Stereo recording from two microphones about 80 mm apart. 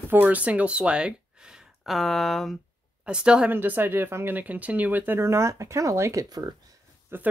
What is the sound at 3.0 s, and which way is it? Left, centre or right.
Speech, centre.